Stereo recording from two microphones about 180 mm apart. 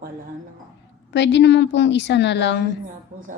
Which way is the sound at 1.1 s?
80° left.